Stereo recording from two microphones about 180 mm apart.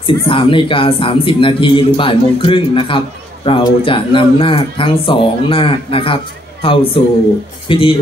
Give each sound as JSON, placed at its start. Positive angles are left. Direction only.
{"t": 0.0, "sound": "a man's voice", "side_deg": 30}